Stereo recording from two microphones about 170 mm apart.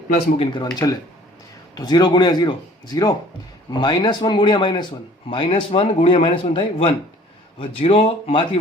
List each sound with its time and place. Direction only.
0.5 s speech: 25° left (ahead or behind)